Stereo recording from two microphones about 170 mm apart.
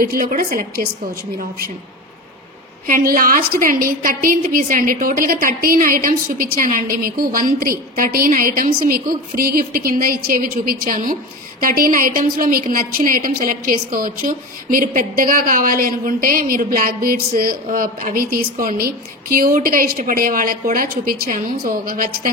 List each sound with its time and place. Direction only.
0.1 s a woman's voice: 55° right (ahead or behind)
2.9 s a woman's voice: 55° right (ahead or behind)